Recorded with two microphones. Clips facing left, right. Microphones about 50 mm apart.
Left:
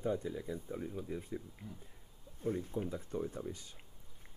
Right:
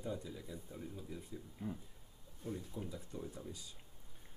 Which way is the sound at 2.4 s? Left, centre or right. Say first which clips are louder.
Left 8 dB; left.